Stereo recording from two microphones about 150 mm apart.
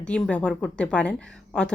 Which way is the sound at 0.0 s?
5° left (ahead or behind).